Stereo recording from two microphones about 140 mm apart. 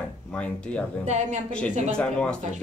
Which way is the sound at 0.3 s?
10° left (ahead or behind).